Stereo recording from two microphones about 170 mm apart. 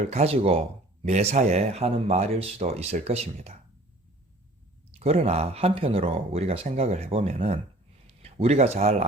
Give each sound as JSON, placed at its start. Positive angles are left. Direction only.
{"t": 0.0, "sound": "speech", "side_deg": -40}
{"t": 4.9, "sound": "speech", "side_deg": -40}